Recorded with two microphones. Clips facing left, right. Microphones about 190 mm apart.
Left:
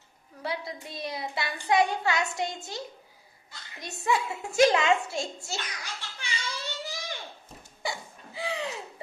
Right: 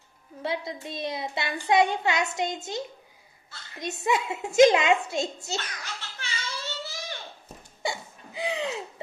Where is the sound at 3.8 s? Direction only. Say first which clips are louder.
Right 2 dB; 20° right (ahead or behind).